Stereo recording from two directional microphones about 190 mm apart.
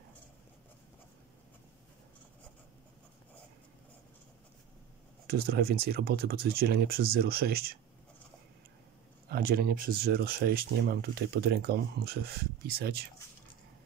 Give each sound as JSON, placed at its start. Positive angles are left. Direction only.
{"t": 5.2, "sound": "speech", "side_deg": -55}
{"t": 9.3, "sound": "speech", "side_deg": -55}